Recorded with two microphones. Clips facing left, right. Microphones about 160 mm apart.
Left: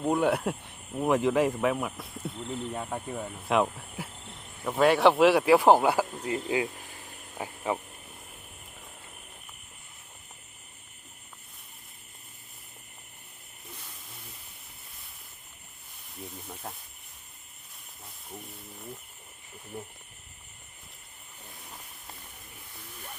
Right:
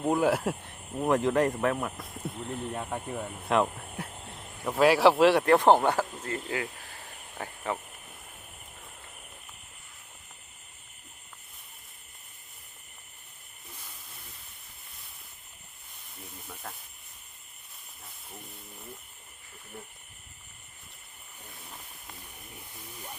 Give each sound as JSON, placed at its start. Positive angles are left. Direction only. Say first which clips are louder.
{"t": 0.1, "sound": "speech", "louder": "even", "side_deg": 0}
{"t": 19.7, "sound": "speech", "louder": "left 5 dB", "side_deg": 15}